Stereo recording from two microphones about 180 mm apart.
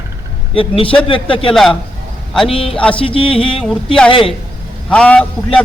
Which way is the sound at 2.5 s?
30° left (ahead or behind).